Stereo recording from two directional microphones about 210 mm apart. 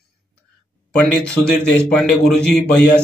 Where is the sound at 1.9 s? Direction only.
5° left (ahead or behind).